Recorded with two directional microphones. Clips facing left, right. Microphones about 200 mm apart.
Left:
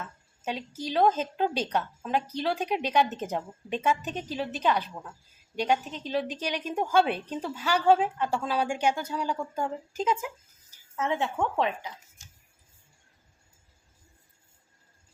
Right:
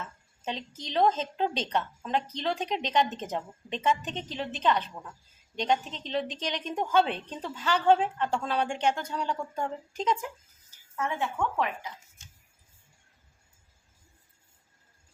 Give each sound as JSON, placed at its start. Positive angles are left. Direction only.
{"t": 0.4, "sound": "a woman's voice", "side_deg": 5}
{"t": 10.9, "sound": "a woman's voice", "side_deg": 20}